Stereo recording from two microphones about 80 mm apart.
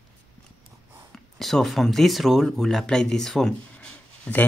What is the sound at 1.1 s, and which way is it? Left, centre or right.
Speech, centre.